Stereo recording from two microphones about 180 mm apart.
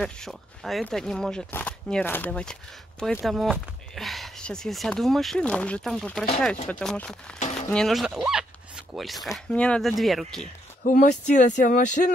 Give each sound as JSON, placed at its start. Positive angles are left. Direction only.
{"t": 0.0, "sound": "speech", "side_deg": 0}
{"t": 3.2, "sound": "speech", "side_deg": -5}
{"t": 7.3, "sound": "a sound", "side_deg": 40}
{"t": 7.7, "sound": "speech", "side_deg": 0}
{"t": 10.8, "sound": "speech", "side_deg": 45}